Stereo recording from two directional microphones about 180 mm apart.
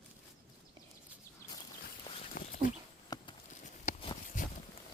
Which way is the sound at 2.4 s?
55° left (ahead or behind).